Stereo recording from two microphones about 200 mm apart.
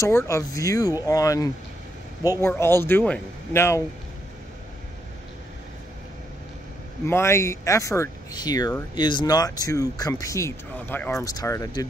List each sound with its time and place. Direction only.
0.0 s speech: 15° left (ahead or behind)
7.1 s speech: 10° left (ahead or behind)